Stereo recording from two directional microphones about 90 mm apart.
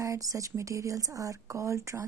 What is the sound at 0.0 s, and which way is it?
A woman's voice, 40° right (ahead or behind).